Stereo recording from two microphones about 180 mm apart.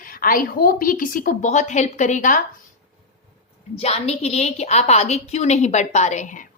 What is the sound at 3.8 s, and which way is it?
A woman's voice, 35° left (ahead or behind).